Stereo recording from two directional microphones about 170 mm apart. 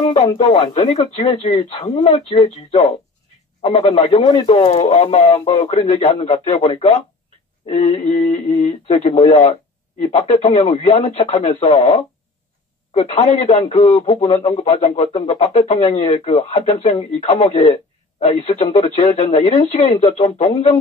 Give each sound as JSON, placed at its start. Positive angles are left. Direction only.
{"t": 0.0, "sound": "speech", "side_deg": 45}